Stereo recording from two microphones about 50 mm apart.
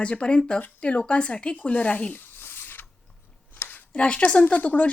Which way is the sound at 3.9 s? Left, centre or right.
Left.